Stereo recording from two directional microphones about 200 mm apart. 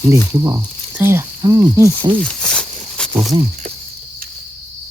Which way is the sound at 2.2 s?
5° left (ahead or behind).